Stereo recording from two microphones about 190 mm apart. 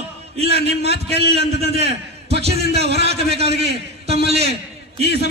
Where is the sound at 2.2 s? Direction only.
35° right (ahead or behind).